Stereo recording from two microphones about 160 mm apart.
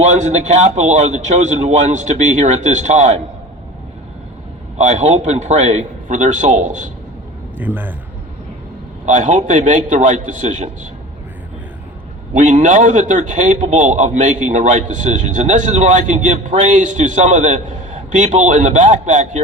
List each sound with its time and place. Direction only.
0.0 s a man's voice: 45° right (ahead or behind)
4.8 s a man's voice: 45° right (ahead or behind)
7.6 s a man's voice: 10° right (ahead or behind)
9.0 s a man's voice: 50° right (ahead or behind)
12.3 s a man's voice: 55° right (ahead or behind)